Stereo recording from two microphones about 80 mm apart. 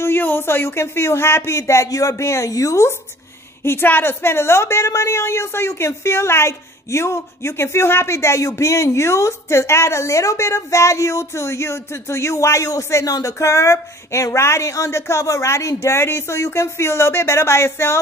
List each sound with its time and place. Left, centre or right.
0.0 s a woman's voice: left
3.6 s a woman's voice: left